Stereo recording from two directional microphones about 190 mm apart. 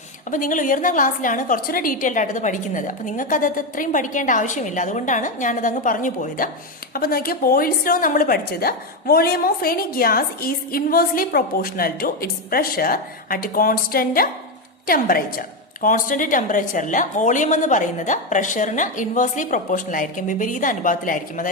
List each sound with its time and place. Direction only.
0.3 s a woman's voice: 45° left (ahead or behind)